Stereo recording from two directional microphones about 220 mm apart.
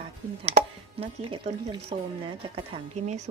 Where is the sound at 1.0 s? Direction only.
25° right (ahead or behind).